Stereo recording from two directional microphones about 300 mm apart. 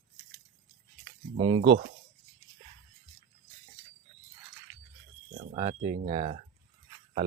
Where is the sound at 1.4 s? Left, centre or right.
Centre.